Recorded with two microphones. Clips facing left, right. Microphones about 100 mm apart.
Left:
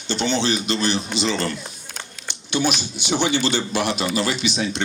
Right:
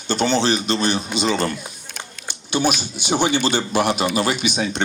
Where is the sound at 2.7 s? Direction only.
50° right (ahead or behind).